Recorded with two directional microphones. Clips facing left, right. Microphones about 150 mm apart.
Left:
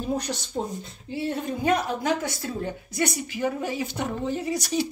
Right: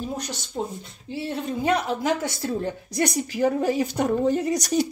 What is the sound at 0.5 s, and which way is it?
Speech, 5° left (ahead or behind).